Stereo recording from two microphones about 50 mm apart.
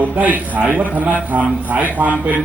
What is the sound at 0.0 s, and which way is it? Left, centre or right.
A man's voice, right.